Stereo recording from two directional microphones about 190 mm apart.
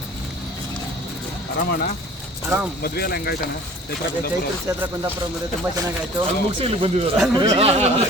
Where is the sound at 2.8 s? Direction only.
55° left (ahead or behind).